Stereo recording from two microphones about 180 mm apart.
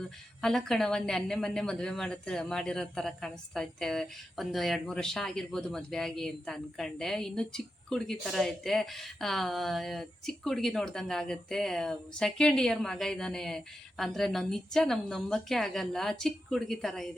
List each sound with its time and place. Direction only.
0.4 s speech: centre (ahead or behind)